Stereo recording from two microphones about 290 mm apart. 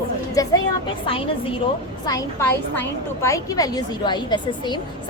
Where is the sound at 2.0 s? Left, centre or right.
Centre.